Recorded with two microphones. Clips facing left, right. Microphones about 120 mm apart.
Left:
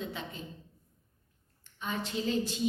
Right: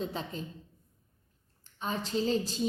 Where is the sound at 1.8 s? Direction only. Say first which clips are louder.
Right 3 dB; 35° right (ahead or behind).